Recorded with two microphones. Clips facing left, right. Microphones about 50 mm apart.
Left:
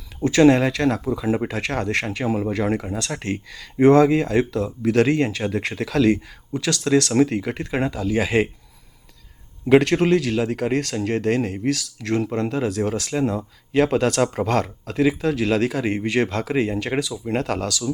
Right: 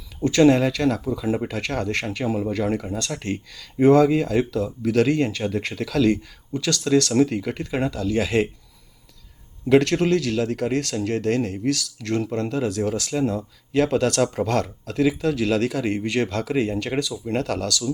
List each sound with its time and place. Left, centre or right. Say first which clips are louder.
0.2 s a sound: left 1 dB; centre
0.4 s speech: left 1 dB; left
3.2 s speech: left 1 dB; centre
4.5 s speech: left 1 dB; left
5.0 s speech: left 1 dB; centre
5.7 s speech: left 2 dB; left
9.6 s speech: left 2 dB; left